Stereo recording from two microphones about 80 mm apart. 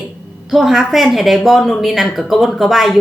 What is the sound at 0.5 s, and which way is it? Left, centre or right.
Speech, centre.